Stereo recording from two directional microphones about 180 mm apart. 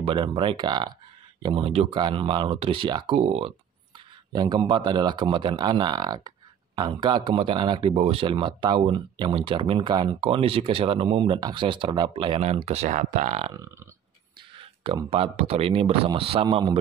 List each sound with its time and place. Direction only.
0.0 s speech: 30° right (ahead or behind)
4.3 s speech: 25° right (ahead or behind); by 13.5 s 40° right (ahead or behind)
14.8 s speech: 30° right (ahead or behind)